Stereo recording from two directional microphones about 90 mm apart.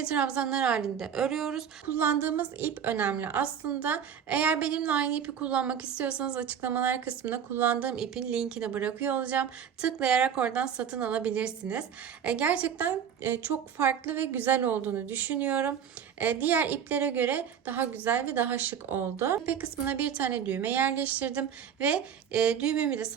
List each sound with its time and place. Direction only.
0.0 s a woman's voice: 10° right (ahead or behind)
1.9 s a woman's voice: 20° right (ahead or behind)